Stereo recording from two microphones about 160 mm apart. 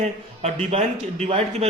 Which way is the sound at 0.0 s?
45° right (ahead or behind).